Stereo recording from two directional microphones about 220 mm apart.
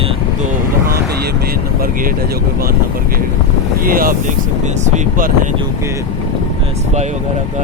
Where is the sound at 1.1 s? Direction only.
45° right (ahead or behind).